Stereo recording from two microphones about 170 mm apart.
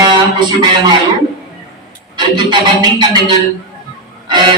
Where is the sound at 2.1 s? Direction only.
25° right (ahead or behind).